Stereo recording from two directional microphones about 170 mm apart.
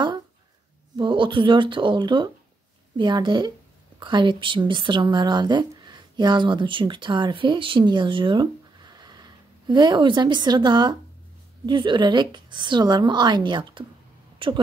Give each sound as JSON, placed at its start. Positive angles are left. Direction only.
{"t": 0.9, "sound": "a woman's voice", "side_deg": -30}